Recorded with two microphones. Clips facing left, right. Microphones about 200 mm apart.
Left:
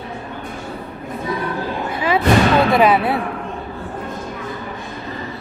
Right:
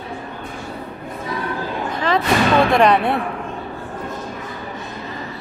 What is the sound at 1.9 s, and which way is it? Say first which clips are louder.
Music: even; 10° left (ahead or behind).